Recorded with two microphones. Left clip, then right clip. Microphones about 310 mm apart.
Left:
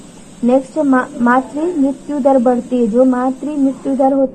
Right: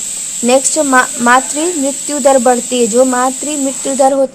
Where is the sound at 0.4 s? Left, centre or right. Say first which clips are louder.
Right 2 dB; right.